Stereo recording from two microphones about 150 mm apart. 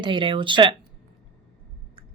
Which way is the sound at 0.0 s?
35° right (ahead or behind).